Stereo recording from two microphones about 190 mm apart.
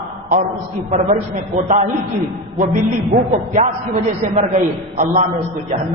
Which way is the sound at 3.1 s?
40° right (ahead or behind).